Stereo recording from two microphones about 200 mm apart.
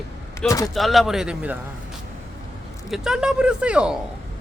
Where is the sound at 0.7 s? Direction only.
Centre (ahead or behind).